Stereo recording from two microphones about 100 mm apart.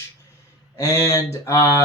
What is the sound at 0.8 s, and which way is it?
Speech, 30° left (ahead or behind).